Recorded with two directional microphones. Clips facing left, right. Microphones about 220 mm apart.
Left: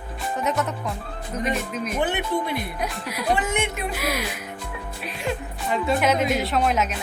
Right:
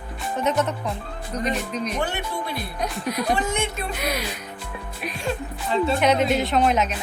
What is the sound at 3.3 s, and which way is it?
Speech, 20° left (ahead or behind).